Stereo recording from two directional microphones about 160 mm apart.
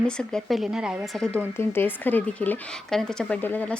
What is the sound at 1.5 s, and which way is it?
A woman's voice, 15° left (ahead or behind).